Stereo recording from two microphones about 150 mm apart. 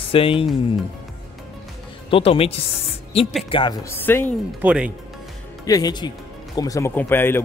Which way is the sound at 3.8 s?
15° left (ahead or behind).